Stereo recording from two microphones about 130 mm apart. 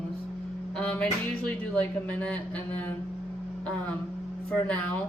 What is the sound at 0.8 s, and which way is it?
Music, 10° left (ahead or behind).